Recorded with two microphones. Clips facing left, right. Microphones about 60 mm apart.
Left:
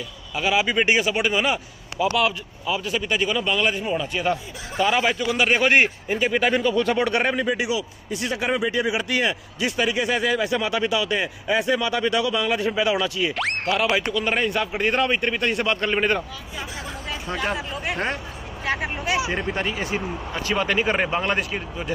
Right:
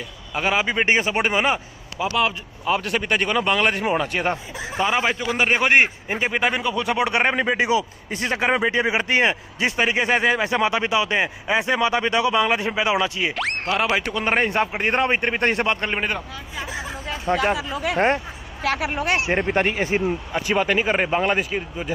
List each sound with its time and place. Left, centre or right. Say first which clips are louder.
0.3 s a man's voice: even; right
2.0 s speech: left 3 dB; centre
2.6 s a man's voice: right 3 dB; right
4.7 s a man's voice: left 1 dB; right
7.3 s a man's voice: right 3 dB; right
8.7 s a man's voice: right 3 dB; right
13.3 s speech: even; centre
13.7 s a man's voice: right 1 dB; right
17.3 s a man's voice: right 6 dB; right
18.6 s speech: right 3 dB; right
19.3 s a man's voice: right 5 dB; right
20.4 s speech: right 1 dB; centre